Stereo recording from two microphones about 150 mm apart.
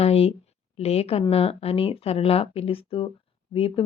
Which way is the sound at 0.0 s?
45° left (ahead or behind).